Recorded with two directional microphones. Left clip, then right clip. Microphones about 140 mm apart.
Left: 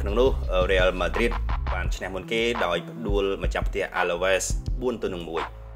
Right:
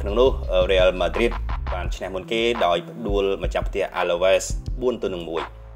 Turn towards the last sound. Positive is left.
turn(degrees=-15)  # may be behind; listen again after turning